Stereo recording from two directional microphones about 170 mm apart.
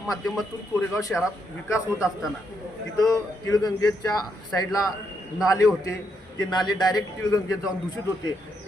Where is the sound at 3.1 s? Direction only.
20° left (ahead or behind).